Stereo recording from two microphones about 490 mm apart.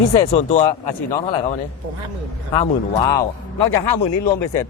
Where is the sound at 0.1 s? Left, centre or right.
Centre.